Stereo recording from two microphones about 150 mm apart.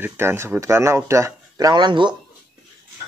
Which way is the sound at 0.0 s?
15° right (ahead or behind).